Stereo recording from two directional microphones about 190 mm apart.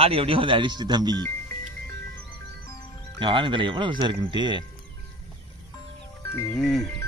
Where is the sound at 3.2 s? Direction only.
25° right (ahead or behind).